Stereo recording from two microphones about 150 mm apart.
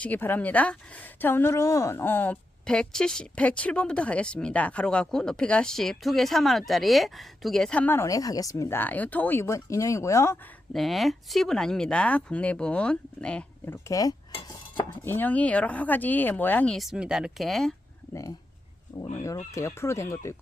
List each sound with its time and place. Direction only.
0.0 s a woman's voice: 10° left (ahead or behind)
10.7 s speech: centre (ahead or behind)
13.8 s speech: 25° left (ahead or behind)
15.0 s a woman's voice: 10° left (ahead or behind)
16.7 s speech: centre (ahead or behind)
18.1 s speech: 20° left (ahead or behind)